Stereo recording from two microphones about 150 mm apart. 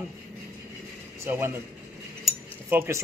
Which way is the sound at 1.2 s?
15° right (ahead or behind).